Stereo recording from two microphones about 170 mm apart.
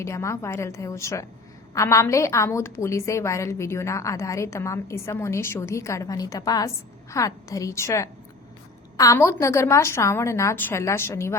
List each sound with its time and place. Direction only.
0.0 s a woman's voice: 15° left (ahead or behind)